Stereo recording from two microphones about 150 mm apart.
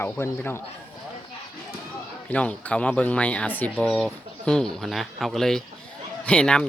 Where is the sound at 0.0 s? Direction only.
15° left (ahead or behind).